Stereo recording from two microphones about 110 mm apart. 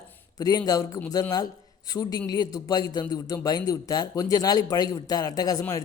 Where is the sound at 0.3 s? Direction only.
35° left (ahead or behind).